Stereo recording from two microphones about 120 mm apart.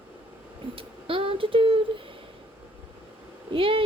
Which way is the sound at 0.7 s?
50° right (ahead or behind).